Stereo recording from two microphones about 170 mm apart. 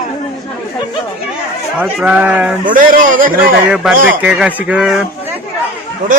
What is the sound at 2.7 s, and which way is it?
Speech, 50° right (ahead or behind).